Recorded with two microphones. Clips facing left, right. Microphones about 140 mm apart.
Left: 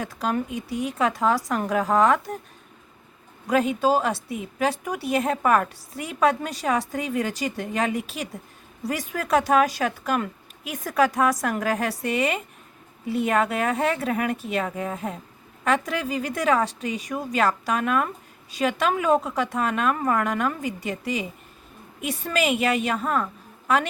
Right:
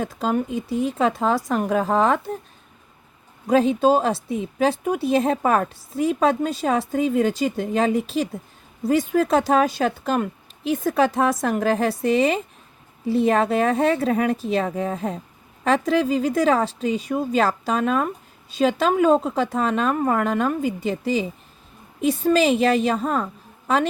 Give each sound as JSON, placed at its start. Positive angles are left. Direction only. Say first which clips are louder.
{"t": 0.0, "sound": "a woman's voice", "louder": "right 3 dB", "side_deg": -25}
{"t": 3.4, "sound": "a woman's voice", "louder": "right 4 dB", "side_deg": -25}
{"t": 22.0, "sound": "a woman's voice", "louder": "right 7 dB", "side_deg": -30}